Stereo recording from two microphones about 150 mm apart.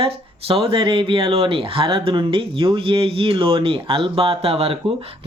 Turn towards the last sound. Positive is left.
turn(degrees=-40)  # may be behind; listen again after turning